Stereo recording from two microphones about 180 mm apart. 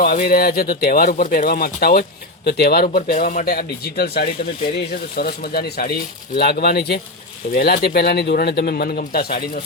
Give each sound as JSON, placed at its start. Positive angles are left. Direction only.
{"t": 0.0, "sound": "speech", "side_deg": 55}